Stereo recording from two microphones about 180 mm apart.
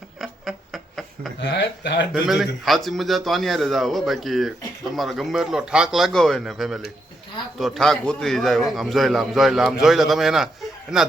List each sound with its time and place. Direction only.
0.2 s a sound: centre (ahead or behind)
1.4 s speech: 75° left (ahead or behind)
2.2 s a man's voice: centre (ahead or behind)